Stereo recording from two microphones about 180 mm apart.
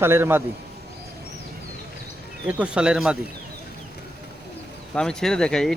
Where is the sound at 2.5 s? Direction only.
5° right (ahead or behind).